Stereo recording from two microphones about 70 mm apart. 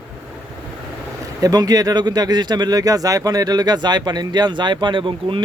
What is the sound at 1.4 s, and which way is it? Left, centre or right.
Speech, right.